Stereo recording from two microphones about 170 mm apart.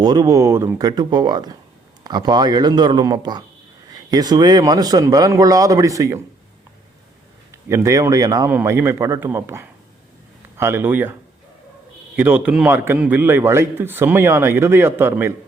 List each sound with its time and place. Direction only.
0.0 s speech: 25° right (ahead or behind)
7.5 s a man's voice: 15° right (ahead or behind)